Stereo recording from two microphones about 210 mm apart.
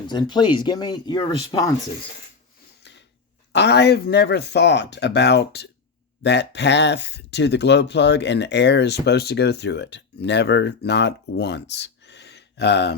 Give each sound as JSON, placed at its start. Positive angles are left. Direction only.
{"t": 0.1, "sound": "speech", "side_deg": 20}
{"t": 3.5, "sound": "speech", "side_deg": 55}